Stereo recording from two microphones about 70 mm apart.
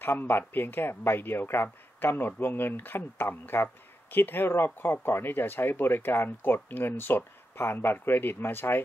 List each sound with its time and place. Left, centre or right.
0.0 s speech: left